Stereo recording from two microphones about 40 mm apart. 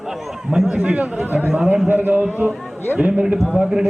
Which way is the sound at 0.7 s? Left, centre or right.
Right.